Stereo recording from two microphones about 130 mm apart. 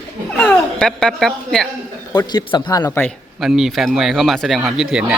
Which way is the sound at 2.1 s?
35° left (ahead or behind).